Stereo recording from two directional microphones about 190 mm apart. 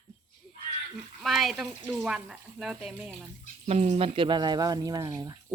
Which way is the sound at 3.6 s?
35° right (ahead or behind).